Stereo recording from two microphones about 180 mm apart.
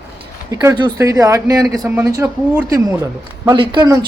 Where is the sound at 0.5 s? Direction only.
20° right (ahead or behind).